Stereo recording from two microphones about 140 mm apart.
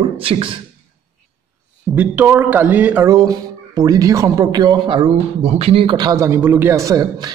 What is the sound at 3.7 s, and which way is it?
A man's voice, 25° right (ahead or behind).